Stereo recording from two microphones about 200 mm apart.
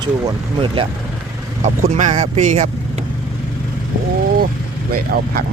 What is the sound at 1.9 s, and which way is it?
Speech, 35° right (ahead or behind).